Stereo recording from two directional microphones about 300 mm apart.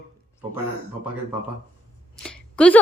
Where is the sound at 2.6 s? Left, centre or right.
Centre.